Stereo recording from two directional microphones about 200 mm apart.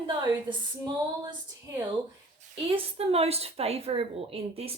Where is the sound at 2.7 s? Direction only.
30° right (ahead or behind).